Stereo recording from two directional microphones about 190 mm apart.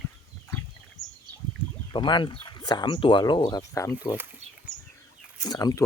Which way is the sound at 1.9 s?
25° left (ahead or behind).